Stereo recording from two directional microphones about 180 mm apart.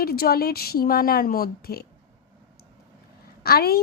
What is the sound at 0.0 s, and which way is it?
A woman's voice, 60° left (ahead or behind).